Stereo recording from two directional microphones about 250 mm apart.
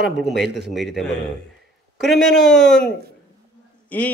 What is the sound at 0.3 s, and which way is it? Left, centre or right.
Speech, right.